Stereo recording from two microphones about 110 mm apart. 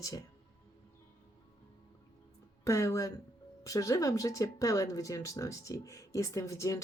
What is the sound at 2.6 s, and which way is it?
Speech, 30° left (ahead or behind).